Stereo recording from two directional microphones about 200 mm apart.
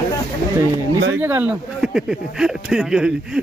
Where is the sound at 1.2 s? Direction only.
10° right (ahead or behind).